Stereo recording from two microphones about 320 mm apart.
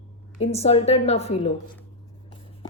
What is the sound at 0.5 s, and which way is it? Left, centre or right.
A woman's voice, centre.